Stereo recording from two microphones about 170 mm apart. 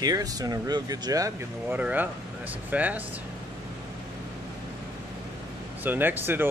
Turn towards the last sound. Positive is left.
turn(degrees=-10)  # may be behind; listen again after turning